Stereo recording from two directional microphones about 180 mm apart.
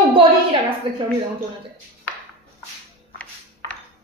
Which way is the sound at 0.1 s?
30° right (ahead or behind).